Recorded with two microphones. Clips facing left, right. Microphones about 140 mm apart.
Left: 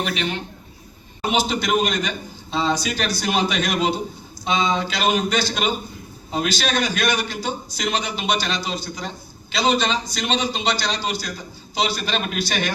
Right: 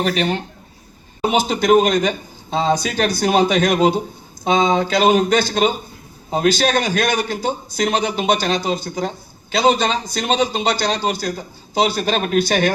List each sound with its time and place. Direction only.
0.0 s a man's voice: 40° right (ahead or behind)